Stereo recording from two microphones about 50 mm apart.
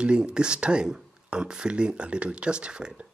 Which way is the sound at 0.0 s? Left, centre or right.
Centre.